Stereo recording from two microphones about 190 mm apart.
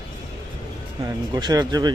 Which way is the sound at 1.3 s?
20° right (ahead or behind).